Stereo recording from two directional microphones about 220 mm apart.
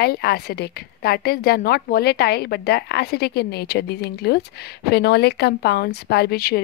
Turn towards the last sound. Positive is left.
turn(degrees=45)  # may be behind; listen again after turning